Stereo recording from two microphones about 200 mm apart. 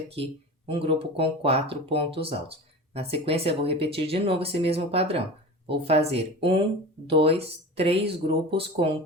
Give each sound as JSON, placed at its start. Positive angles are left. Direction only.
{"t": 0.7, "sound": "speech", "side_deg": -25}